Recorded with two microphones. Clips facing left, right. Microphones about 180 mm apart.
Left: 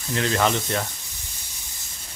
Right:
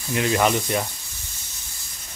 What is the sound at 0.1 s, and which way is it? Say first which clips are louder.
Speech: right 2 dB; 15° right (ahead or behind).